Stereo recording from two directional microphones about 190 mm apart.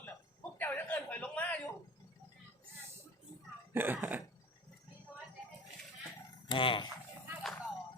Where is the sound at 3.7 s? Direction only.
10° right (ahead or behind).